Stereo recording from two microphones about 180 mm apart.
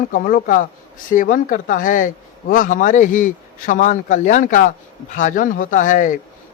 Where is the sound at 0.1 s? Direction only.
50° left (ahead or behind).